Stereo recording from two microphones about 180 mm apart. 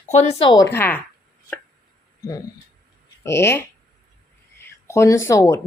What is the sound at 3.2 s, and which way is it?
Speech, 15° left (ahead or behind).